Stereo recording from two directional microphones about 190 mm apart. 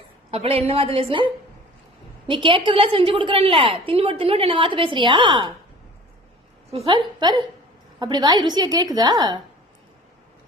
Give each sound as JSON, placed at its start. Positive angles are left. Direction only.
{"t": 0.3, "sound": "a woman's voice", "side_deg": -30}
{"t": 6.7, "sound": "a woman's voice", "side_deg": -30}